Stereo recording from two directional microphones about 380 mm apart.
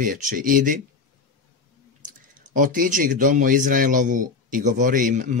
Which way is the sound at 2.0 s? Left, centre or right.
Right.